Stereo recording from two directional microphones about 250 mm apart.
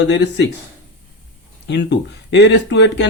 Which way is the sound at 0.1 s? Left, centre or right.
Left.